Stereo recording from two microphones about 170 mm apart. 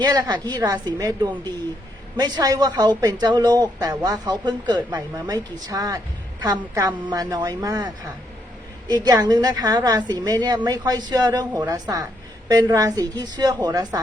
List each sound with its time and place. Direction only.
0.0 s speech: 25° right (ahead or behind)
9.0 s speech: 25° right (ahead or behind)